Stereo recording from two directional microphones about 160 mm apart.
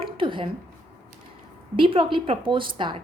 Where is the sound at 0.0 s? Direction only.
30° right (ahead or behind).